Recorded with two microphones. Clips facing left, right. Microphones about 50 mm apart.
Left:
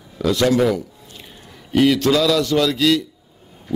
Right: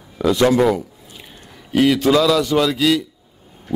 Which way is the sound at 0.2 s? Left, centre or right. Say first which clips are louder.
Right 2 dB; right.